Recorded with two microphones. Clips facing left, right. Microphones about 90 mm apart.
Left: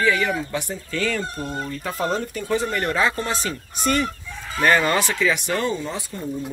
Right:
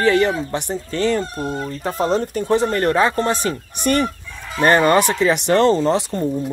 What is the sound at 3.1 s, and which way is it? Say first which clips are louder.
Speech: right 6 dB; 50° right (ahead or behind).